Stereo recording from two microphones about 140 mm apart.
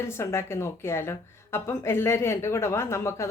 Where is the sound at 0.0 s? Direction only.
20° left (ahead or behind).